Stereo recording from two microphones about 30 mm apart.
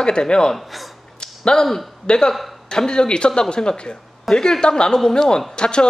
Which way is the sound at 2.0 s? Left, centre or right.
Left.